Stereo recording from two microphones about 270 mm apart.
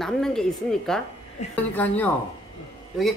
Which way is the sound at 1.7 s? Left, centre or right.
Centre.